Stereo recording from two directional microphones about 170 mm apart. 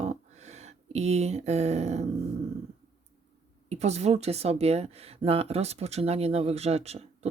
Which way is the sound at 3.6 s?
40° right (ahead or behind).